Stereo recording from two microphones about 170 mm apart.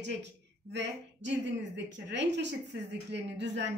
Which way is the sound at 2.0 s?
90° right.